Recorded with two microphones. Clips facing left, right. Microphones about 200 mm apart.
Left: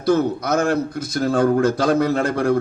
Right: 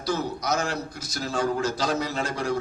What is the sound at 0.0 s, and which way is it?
A man's voice, 55° left (ahead or behind).